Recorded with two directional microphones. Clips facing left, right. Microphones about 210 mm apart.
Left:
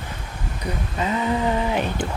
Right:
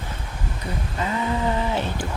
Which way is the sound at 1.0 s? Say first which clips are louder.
Left 3 dB; 20° left (ahead or behind).